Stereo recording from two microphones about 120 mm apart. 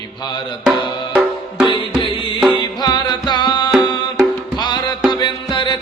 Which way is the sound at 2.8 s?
35° left (ahead or behind).